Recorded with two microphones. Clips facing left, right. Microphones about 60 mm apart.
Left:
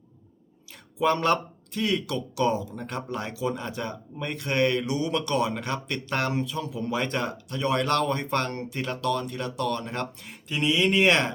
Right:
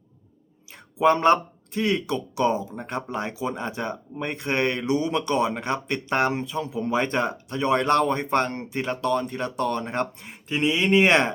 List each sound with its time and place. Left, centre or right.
0.9 s speech: right